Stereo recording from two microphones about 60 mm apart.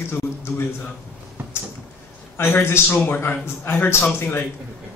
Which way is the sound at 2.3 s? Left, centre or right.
Left.